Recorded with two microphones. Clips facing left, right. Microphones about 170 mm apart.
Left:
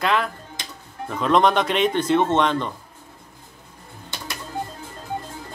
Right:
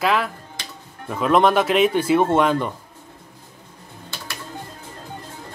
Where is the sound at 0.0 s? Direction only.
5° right (ahead or behind).